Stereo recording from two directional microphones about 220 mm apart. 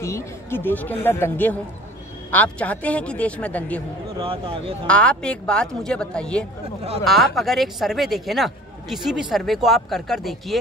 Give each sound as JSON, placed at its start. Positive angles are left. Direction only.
{"t": 0.0, "sound": "a woman's voice", "side_deg": 10}
{"t": 4.2, "sound": "speech", "side_deg": -25}
{"t": 4.8, "sound": "speech", "side_deg": 5}